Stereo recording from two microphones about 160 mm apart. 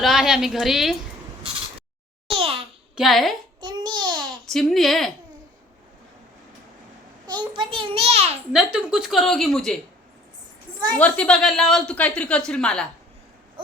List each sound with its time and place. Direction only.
0.0 s a woman's voice: centre (ahead or behind)
2.3 s babbling: 35° right (ahead or behind)
2.9 s a woman's voice: centre (ahead or behind)
3.6 s babbling: 30° right (ahead or behind)
4.5 s a woman's voice: centre (ahead or behind)
7.5 s a child's voice: 30° right (ahead or behind)
8.5 s a woman's voice: 5° right (ahead or behind)
10.9 s a woman's voice: 10° left (ahead or behind)